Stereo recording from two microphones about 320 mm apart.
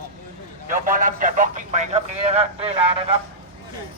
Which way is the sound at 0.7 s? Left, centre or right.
Right.